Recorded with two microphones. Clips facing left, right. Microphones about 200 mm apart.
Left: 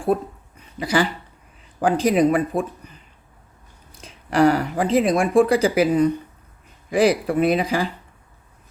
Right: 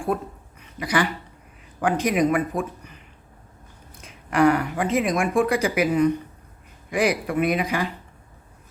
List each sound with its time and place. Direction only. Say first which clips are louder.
0.1 s speech: left 5 dB; 35° left (ahead or behind)
4.0 s speech: left 2 dB; 30° left (ahead or behind)